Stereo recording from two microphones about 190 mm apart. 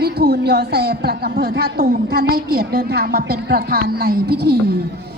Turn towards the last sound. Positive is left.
turn(degrees=-55)  # may be behind; listen again after turning